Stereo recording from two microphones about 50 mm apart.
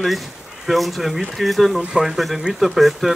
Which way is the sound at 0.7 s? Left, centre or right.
Centre.